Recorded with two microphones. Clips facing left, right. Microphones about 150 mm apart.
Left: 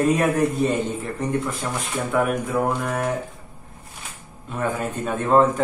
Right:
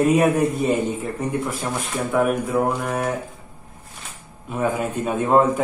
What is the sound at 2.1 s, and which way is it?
Speech, 5° right (ahead or behind).